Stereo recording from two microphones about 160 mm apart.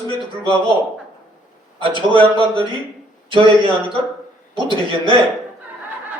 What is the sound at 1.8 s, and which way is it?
A man's voice, 30° right (ahead or behind).